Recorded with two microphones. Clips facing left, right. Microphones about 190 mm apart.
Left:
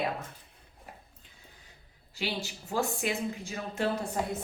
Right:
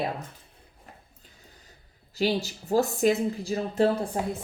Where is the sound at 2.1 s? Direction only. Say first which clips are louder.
Right 9 dB; 40° right (ahead or behind).